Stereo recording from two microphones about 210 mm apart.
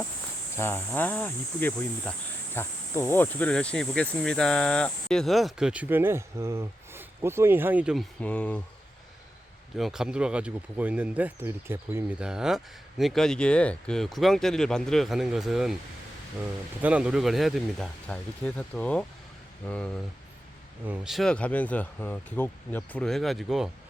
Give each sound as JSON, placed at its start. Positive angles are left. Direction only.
{"t": 0.5, "sound": "cricket", "side_deg": 10}
{"t": 2.6, "sound": "speech", "side_deg": 10}
{"t": 8.2, "sound": "cricket", "side_deg": 5}
{"t": 9.7, "sound": "speech", "side_deg": 0}
{"t": 16.8, "sound": "speech", "side_deg": -5}
{"t": 20.8, "sound": "speech", "side_deg": -5}